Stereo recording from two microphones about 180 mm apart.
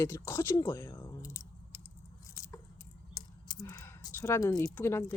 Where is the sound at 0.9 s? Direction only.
15° left (ahead or behind).